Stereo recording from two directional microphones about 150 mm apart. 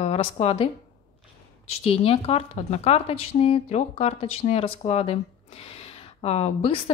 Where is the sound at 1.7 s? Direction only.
40° left (ahead or behind).